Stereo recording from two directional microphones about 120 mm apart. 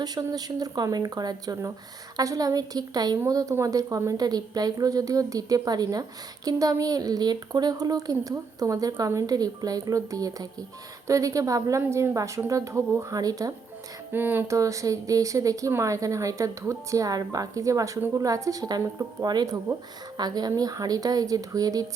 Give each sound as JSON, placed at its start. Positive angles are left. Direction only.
{"t": 0.0, "sound": "a woman's voice", "side_deg": -30}
{"t": 14.1, "sound": "a woman's voice", "side_deg": -15}